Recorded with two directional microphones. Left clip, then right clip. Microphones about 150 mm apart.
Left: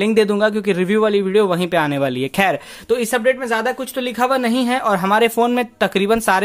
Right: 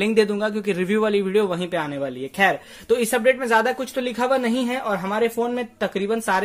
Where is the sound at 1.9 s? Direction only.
45° left (ahead or behind).